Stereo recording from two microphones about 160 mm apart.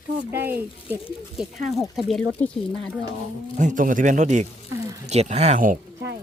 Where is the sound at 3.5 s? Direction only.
50° right (ahead or behind).